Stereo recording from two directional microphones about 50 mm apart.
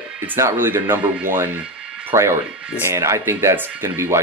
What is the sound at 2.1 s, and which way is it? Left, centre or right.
Speech, right.